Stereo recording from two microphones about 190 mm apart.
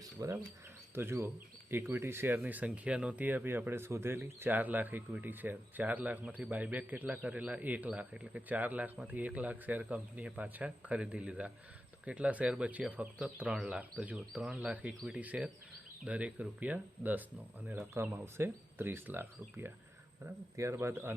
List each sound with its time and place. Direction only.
0.0 s speech: 15° right (ahead or behind)